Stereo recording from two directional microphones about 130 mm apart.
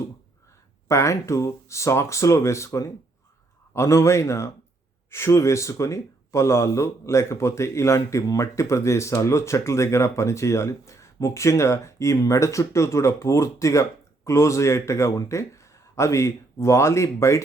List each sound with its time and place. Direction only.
0.9 s speech: 20° left (ahead or behind)